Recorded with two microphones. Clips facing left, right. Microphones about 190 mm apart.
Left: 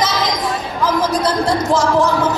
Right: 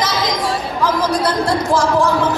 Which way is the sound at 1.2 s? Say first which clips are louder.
Left 1 dB; 20° left (ahead or behind).